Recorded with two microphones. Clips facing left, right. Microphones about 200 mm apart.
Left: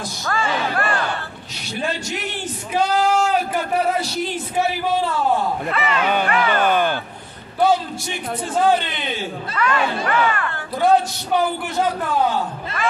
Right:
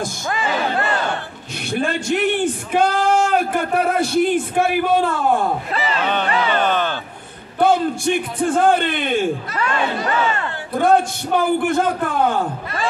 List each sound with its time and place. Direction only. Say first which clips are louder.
0.3 s speech: even; 20° right (ahead or behind)
1.7 s speech: right 5 dB; 55° right (ahead or behind)
6.2 s speech: even; 25° right (ahead or behind)
6.6 s speech: left 1 dB; 10° left (ahead or behind)
7.6 s speech: right 3 dB; 55° right (ahead or behind)
9.6 s speech: left 4 dB; 25° right (ahead or behind)
10.8 s speech: right 1 dB; 50° right (ahead or behind)